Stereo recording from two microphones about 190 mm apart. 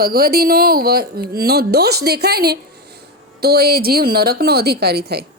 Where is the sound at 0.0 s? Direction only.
50° right (ahead or behind).